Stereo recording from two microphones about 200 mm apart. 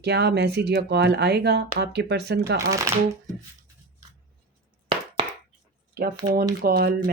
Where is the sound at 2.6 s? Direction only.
15° right (ahead or behind).